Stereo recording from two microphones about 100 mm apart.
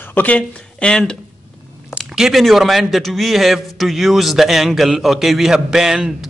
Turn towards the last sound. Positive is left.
turn(degrees=-5)  # may be behind; listen again after turning